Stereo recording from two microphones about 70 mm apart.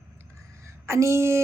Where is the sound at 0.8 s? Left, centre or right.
Right.